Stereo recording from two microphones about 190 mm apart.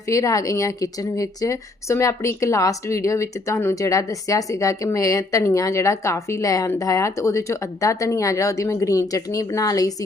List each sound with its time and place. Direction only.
0.1 s a woman's voice: 15° left (ahead or behind)